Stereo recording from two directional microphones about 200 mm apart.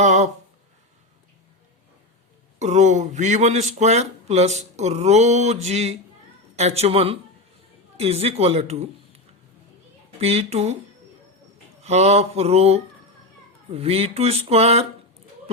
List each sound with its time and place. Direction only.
0.0 s a sound: 35° right (ahead or behind)
2.6 s speech: 35° right (ahead or behind)
11.8 s speech: 30° right (ahead or behind)